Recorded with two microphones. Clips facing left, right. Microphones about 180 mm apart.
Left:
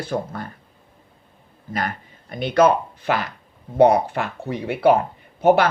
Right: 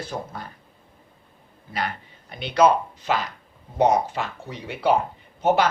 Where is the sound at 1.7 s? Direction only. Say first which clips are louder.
Left 2 dB; 50° left (ahead or behind).